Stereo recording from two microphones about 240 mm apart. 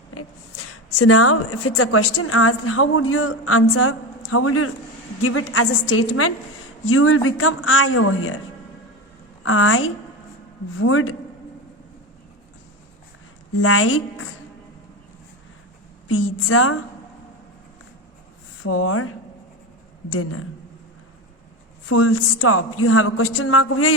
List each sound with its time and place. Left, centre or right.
0.9 s a woman's voice: left
9.4 s a woman's voice: left
13.6 s a woman's voice: left
16.0 s a woman's voice: left
18.6 s a woman's voice: left
21.8 s a woman's voice: left